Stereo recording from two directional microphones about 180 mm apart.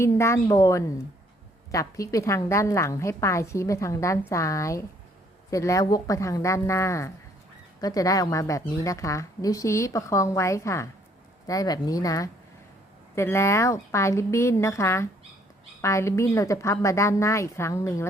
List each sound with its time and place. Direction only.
0.0 s a woman's voice: 15° left (ahead or behind)